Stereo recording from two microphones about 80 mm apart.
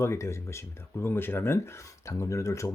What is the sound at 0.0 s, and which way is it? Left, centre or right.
Speech, left.